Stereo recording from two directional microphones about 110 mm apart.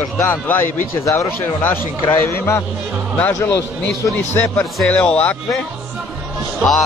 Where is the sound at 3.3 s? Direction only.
25° left (ahead or behind).